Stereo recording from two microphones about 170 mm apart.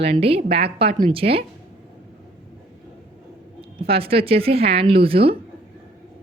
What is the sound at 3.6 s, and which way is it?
A woman's voice, 35° right (ahead or behind).